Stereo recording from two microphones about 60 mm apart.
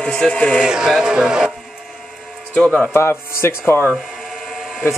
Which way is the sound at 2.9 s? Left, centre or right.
Left.